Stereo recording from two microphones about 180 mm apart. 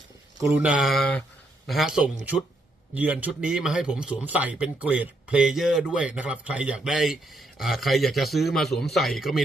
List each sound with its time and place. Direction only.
0.3 s a man's voice: 15° right (ahead or behind)